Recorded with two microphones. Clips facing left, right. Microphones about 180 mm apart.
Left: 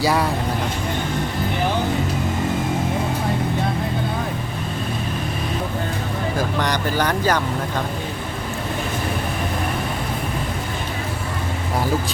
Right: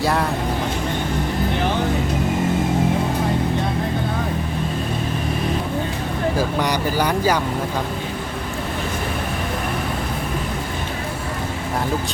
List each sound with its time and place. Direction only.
0.0 s speech: centre (ahead or behind)
6.6 s speech: 10° right (ahead or behind)